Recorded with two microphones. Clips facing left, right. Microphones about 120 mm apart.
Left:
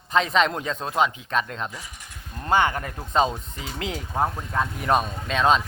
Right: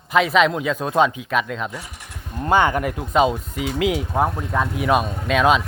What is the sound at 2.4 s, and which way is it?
Speech, 20° right (ahead or behind).